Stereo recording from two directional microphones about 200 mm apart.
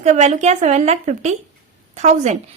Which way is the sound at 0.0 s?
35° right (ahead or behind).